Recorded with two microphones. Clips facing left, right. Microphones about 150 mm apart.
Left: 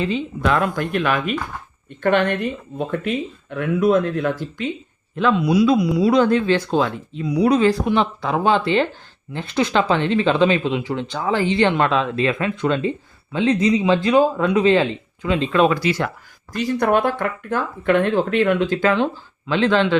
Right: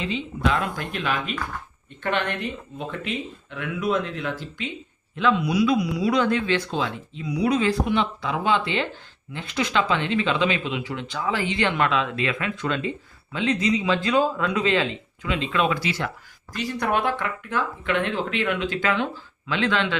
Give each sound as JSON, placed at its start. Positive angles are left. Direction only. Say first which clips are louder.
{"t": 0.0, "sound": "speech", "louder": "left 4 dB", "side_deg": 45}